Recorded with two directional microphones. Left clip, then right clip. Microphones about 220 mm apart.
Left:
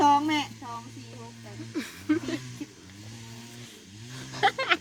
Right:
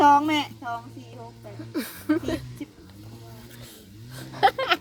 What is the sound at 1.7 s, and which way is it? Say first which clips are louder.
Speech: right 3 dB; 50° right (ahead or behind).